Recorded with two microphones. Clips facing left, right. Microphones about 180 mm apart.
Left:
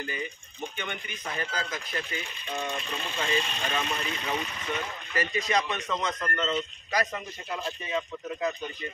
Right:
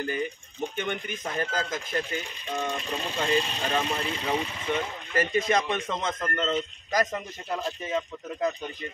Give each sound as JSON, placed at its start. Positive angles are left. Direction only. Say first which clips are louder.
{"t": 0.0, "sound": "a man's voice", "louder": "right 6 dB", "side_deg": -45}
{"t": 5.1, "sound": "a man's voice", "louder": "right 4 dB", "side_deg": -50}